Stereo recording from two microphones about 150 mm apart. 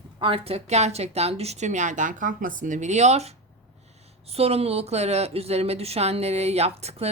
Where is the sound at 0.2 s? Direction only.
35° right (ahead or behind).